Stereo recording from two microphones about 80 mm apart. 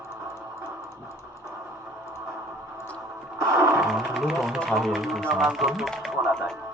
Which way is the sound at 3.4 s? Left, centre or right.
Right.